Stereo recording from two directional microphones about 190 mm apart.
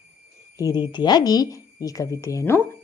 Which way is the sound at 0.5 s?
20° left (ahead or behind).